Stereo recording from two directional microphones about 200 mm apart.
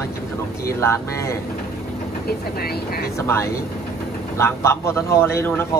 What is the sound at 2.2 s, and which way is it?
Speech, 50° left (ahead or behind).